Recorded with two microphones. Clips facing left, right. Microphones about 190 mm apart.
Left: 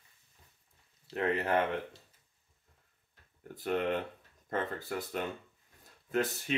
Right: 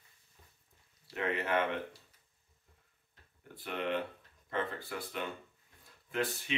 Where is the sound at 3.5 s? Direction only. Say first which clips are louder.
Left 4 dB; 45° left (ahead or behind).